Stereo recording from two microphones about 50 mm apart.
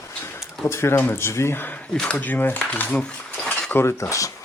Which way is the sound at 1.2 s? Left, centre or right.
Left.